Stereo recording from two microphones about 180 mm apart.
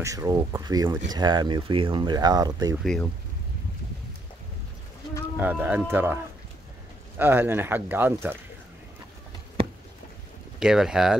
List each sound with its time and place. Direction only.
0.0 s speech: 20° right (ahead or behind)
2.8 s speech: centre (ahead or behind)
5.4 s speech: 10° right (ahead or behind)
7.2 s speech: 10° right (ahead or behind)
10.6 s speech: 5° right (ahead or behind)